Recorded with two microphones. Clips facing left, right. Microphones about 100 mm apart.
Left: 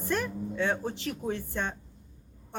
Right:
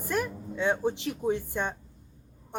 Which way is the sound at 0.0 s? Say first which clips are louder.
Even; 15° right (ahead or behind).